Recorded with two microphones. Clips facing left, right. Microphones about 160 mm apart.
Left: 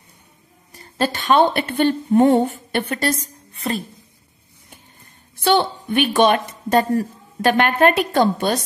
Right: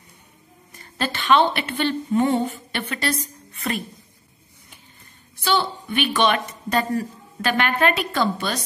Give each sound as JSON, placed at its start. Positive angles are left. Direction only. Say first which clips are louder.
{"t": 0.7, "sound": "a woman's voice", "louder": "left 5 dB", "side_deg": 40}
{"t": 3.5, "sound": "speech", "louder": "left 3 dB", "side_deg": 30}
{"t": 5.4, "sound": "a woman's voice", "louder": "left 5 dB", "side_deg": 55}